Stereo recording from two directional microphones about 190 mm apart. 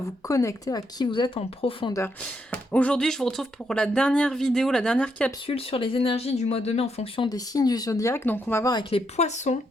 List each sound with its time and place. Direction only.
0.3 s speech: 15° left (ahead or behind)
2.0 s speech: 10° left (ahead or behind)
5.5 s speech: 30° left (ahead or behind)